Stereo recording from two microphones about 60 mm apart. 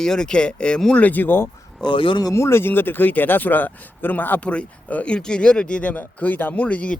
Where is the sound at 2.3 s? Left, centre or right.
Left.